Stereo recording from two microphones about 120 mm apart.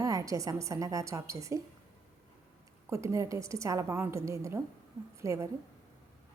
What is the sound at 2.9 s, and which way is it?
A woman's voice, 25° right (ahead or behind).